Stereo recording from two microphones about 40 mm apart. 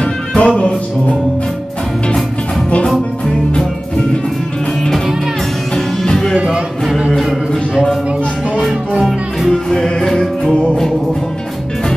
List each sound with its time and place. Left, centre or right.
0.0 s music: left
6.0 s music: centre
9.0 s music: centre